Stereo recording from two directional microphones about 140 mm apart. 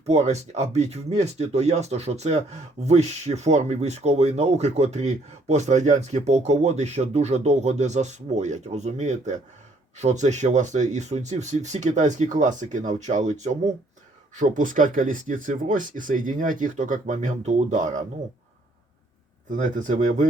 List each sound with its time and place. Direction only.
0.0 s speech: 50° right (ahead or behind)
14.3 s speech: 65° right (ahead or behind)
19.5 s speech: 65° right (ahead or behind)